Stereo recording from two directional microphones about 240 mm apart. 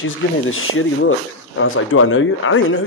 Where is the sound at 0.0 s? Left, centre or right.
Left.